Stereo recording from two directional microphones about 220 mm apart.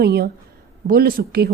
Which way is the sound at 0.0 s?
45° right (ahead or behind).